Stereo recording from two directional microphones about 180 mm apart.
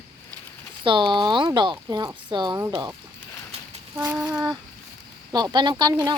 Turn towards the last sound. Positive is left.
turn(degrees=-20)  # may be behind; listen again after turning